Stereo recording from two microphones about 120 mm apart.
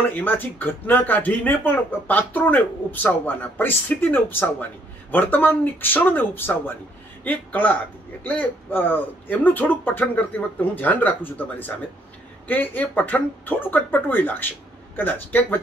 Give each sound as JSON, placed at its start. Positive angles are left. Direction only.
{"t": 0.1, "sound": "speech", "side_deg": 15}